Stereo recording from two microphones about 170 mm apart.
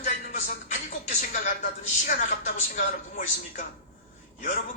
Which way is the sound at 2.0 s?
45° left (ahead or behind).